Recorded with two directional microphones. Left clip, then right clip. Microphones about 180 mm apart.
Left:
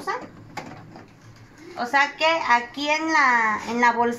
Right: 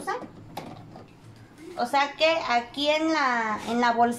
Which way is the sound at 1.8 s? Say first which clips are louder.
Left 2 dB; 45° right (ahead or behind).